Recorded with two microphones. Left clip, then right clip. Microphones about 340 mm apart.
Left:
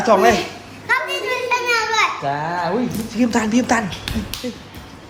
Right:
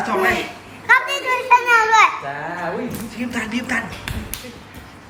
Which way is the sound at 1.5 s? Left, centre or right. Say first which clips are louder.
Right 6 dB; centre.